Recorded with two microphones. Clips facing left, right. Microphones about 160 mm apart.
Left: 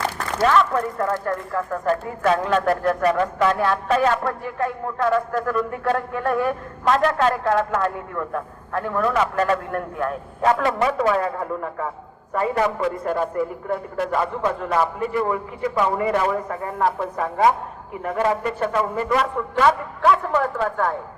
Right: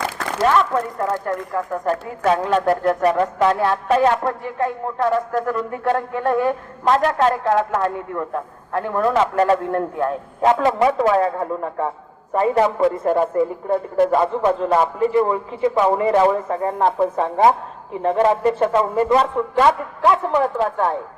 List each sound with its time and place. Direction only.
1.2 s speech: 20° right (ahead or behind)